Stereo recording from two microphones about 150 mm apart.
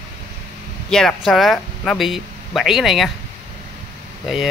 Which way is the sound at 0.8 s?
5° left (ahead or behind).